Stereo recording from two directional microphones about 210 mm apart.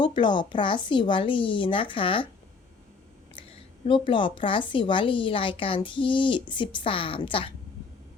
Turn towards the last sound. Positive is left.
turn(degrees=25)  # may be behind; listen again after turning